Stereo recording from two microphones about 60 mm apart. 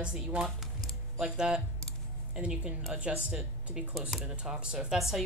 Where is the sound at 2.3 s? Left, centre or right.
Centre.